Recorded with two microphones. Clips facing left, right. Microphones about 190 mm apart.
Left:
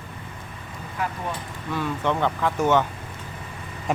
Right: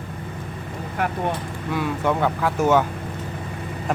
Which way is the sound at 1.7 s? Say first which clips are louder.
Right 2 dB; 10° right (ahead or behind).